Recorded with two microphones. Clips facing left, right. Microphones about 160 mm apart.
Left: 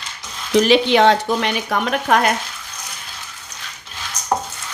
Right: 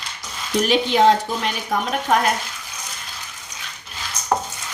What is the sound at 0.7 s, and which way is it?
Speech, 85° left.